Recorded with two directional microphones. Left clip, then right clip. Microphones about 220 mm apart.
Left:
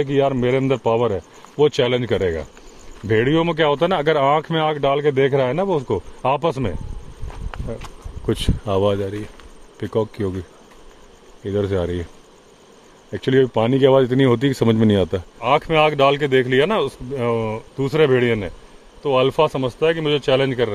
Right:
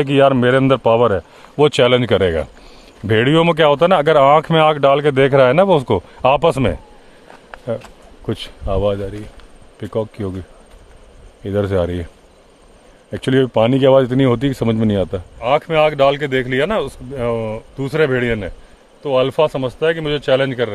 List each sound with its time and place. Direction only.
0.0 s speech: 30° right (ahead or behind)
8.3 s speech: centre (ahead or behind)
11.4 s a man's voice: 15° right (ahead or behind)
13.1 s a man's voice: 15° right (ahead or behind)